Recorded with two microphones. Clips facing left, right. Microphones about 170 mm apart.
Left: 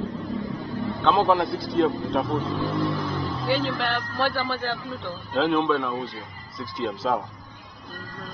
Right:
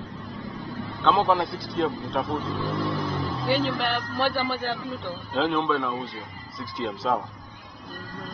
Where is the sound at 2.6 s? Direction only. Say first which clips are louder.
Left 2 dB; centre (ahead or behind).